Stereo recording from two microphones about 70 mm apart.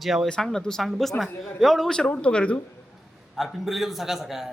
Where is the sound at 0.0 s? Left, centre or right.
Centre.